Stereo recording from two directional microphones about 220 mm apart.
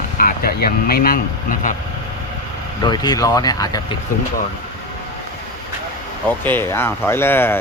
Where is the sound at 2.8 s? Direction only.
20° left (ahead or behind).